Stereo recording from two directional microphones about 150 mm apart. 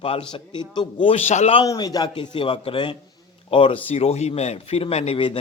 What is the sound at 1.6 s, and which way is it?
A man's voice, 25° left (ahead or behind).